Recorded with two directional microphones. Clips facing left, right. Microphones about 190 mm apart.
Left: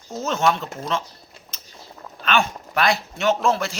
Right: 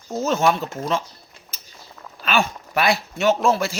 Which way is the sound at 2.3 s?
5° right (ahead or behind).